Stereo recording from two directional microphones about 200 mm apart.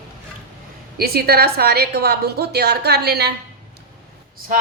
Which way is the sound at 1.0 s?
50° right (ahead or behind).